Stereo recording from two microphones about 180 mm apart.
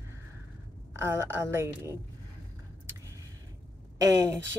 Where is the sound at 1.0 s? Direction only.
15° right (ahead or behind).